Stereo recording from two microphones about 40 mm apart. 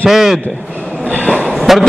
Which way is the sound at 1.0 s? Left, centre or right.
Left.